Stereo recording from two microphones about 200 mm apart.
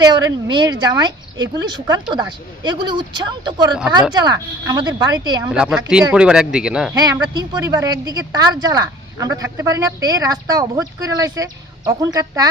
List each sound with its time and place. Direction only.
0.0 s speech: 20° right (ahead or behind)
5.5 s speech: 5° right (ahead or behind)
6.9 s speech: 20° right (ahead or behind)